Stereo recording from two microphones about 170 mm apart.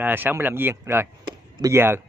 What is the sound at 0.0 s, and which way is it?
Speech, 10° right (ahead or behind).